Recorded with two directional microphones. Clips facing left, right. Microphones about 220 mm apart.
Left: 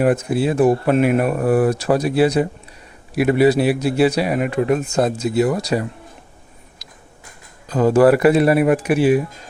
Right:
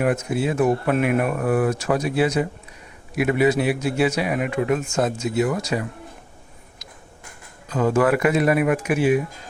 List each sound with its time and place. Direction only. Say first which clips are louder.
0.0 s speech: left 4 dB; 35° left (ahead or behind)
6.8 s a sound: right 4 dB; 35° left (ahead or behind)
7.7 s speech: left 6 dB; 35° left (ahead or behind)